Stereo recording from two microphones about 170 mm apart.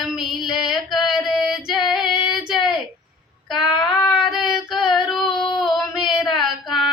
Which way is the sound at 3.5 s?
Centre (ahead or behind).